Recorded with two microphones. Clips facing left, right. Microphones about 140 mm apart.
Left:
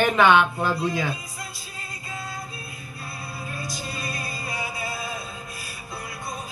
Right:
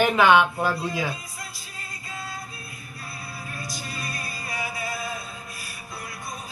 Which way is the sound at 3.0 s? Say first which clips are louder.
Left 2 dB; 25° left (ahead or behind).